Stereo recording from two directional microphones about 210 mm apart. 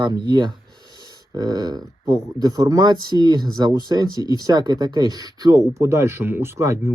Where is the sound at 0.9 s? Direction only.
20° right (ahead or behind).